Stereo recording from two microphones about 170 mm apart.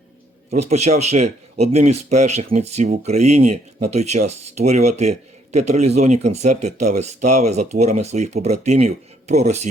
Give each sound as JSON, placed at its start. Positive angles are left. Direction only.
{"t": 0.5, "sound": "speech", "side_deg": -40}